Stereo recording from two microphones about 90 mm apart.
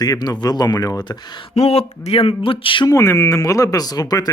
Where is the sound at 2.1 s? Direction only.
85° left.